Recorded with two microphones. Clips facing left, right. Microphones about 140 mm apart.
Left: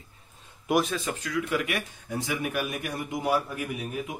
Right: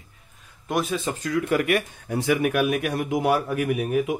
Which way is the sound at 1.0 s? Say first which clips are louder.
Right 5 dB; 35° right (ahead or behind).